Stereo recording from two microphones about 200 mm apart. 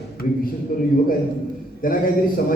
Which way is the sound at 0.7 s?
45° left (ahead or behind).